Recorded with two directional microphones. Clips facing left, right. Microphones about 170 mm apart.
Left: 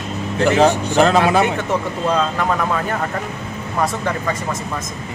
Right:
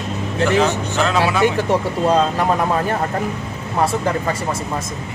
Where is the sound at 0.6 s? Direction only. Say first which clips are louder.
Left 4 dB; 35° left (ahead or behind).